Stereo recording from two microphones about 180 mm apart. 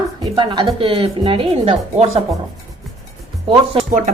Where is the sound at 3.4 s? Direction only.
30° right (ahead or behind).